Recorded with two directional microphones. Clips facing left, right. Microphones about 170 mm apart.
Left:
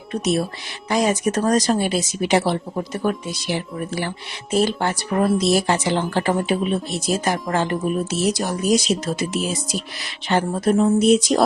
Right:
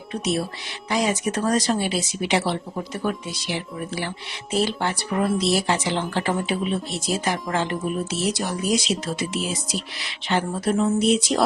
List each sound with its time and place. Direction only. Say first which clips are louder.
0.9 s speech: left 4 dB; 45° left (ahead or behind)